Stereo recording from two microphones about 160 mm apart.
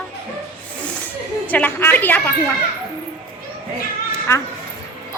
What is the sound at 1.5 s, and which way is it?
Speech, 10° left (ahead or behind).